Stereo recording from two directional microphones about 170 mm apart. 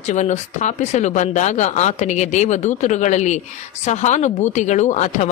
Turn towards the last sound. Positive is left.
turn(degrees=45)  # may be behind; listen again after turning